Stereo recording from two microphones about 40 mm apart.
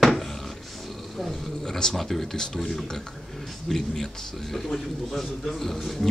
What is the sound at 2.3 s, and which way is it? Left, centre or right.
Speech, centre.